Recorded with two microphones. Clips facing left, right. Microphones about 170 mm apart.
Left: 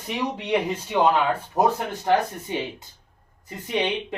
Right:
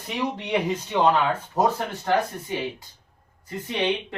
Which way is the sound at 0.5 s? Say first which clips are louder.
Left 1 dB; 10° left (ahead or behind).